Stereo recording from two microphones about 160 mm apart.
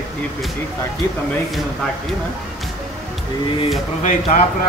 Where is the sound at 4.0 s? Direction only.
45° left (ahead or behind).